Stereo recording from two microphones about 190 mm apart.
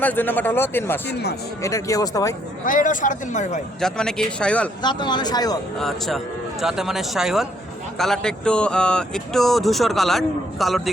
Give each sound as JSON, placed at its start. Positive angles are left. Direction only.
{"t": 0.0, "sound": "speech", "side_deg": 10}
{"t": 2.6, "sound": "speech", "side_deg": 45}
{"t": 3.8, "sound": "speech", "side_deg": 5}
{"t": 4.8, "sound": "speech", "side_deg": 25}
{"t": 5.8, "sound": "speech", "side_deg": 0}